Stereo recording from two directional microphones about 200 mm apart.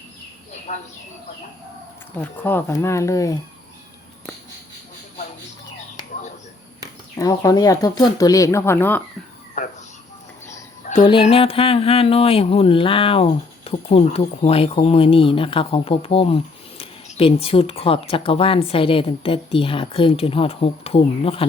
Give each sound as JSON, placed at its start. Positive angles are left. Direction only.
{"t": 0.7, "sound": "speech", "side_deg": 35}
{"t": 2.4, "sound": "speech", "side_deg": 10}
{"t": 7.2, "sound": "speech", "side_deg": 20}
{"t": 9.6, "sound": "a sound", "side_deg": 35}
{"t": 10.9, "sound": "speech", "side_deg": 25}